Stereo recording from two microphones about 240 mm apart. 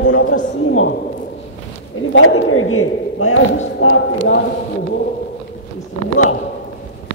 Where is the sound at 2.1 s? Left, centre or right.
Left.